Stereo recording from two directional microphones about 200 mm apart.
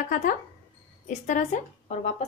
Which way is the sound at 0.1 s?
40° left (ahead or behind).